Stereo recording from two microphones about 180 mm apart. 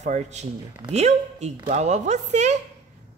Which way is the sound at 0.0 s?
40° right (ahead or behind).